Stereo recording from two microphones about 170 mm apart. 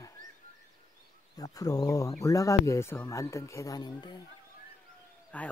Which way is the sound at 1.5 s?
20° left (ahead or behind).